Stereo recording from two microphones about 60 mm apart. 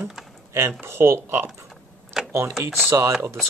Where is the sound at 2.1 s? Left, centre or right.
Centre.